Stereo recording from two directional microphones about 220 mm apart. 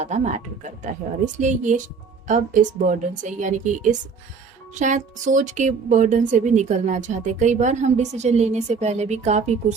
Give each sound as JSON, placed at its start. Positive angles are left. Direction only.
{"t": 0.0, "sound": "speech", "side_deg": -30}